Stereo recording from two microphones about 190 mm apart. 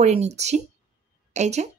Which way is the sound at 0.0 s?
35° right (ahead or behind).